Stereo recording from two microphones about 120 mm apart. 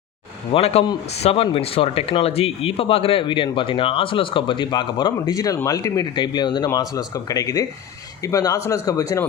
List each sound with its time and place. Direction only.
0.5 s speech: 55° left (ahead or behind); by 6.1 s 30° left (ahead or behind)
6.1 s speech: 40° left (ahead or behind)